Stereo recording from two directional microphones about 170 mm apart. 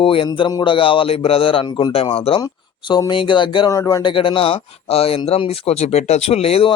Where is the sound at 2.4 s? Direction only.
25° left (ahead or behind).